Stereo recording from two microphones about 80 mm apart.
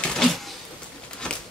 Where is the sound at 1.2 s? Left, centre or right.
Centre.